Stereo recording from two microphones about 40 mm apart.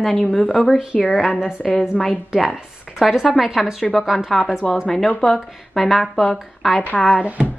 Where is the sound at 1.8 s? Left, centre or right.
Left.